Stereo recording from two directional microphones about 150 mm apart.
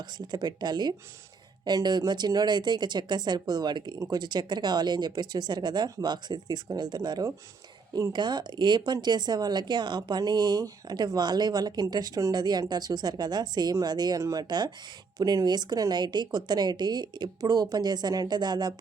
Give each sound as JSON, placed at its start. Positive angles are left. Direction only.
{"t": 0.0, "sound": "speech", "side_deg": -30}